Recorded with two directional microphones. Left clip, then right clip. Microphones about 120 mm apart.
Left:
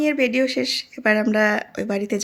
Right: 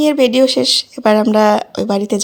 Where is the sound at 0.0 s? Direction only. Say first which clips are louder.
Right 8 dB; 55° right (ahead or behind).